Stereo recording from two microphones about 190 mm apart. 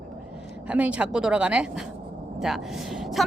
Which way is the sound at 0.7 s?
5° right (ahead or behind).